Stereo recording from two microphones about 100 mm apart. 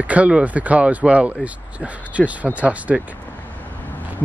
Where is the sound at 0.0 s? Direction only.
15° right (ahead or behind).